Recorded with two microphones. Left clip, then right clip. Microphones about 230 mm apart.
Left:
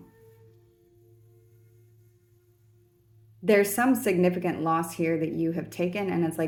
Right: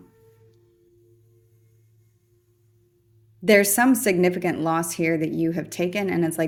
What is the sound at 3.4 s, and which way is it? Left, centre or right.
A woman's voice, right.